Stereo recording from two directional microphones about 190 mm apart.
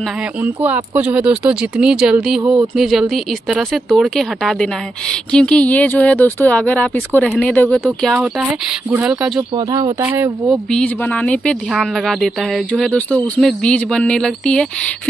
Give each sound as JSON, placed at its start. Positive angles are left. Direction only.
{"t": 0.7, "sound": "speech", "side_deg": -10}
{"t": 9.6, "sound": "speech", "side_deg": -20}
{"t": 10.7, "sound": "speech", "side_deg": 5}